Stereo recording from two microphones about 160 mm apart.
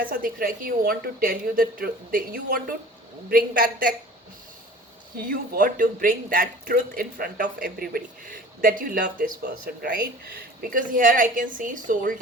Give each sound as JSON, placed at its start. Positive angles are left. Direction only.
{"t": 0.0, "sound": "speech", "side_deg": -65}
{"t": 5.1, "sound": "speech", "side_deg": -60}